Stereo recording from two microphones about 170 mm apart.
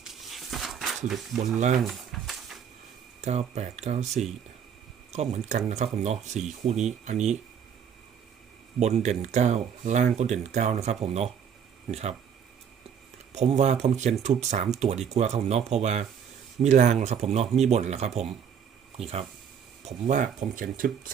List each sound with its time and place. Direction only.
0.1 s a sound: centre (ahead or behind)
1.5 s speech: 45° right (ahead or behind)
1.8 s a sound: centre (ahead or behind)
3.2 s speech: 40° right (ahead or behind)
8.8 s speech: 40° right (ahead or behind)
13.3 s speech: 40° right (ahead or behind)